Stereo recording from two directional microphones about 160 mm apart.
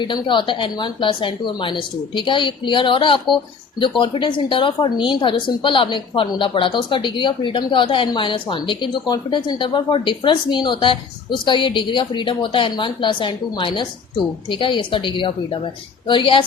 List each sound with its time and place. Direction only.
0.0 s a woman's voice: 30° left (ahead or behind)